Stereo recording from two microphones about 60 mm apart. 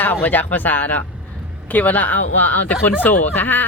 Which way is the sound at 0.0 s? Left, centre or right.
Left.